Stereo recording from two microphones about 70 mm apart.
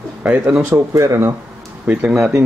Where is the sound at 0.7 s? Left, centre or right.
Right.